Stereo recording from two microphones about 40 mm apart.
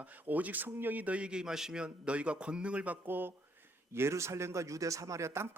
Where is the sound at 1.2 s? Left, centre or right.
Right.